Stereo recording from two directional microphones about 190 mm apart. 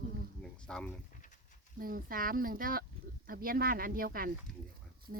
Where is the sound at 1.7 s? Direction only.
50° right (ahead or behind).